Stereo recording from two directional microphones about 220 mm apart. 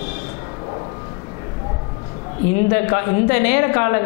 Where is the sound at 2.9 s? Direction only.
15° left (ahead or behind).